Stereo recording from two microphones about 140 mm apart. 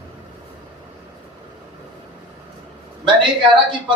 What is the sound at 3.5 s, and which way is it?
Speech, 35° right (ahead or behind).